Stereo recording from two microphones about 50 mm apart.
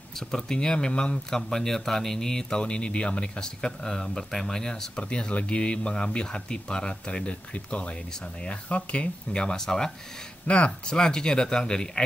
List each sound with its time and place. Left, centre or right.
0.4 s speech: centre
10.4 s speech: left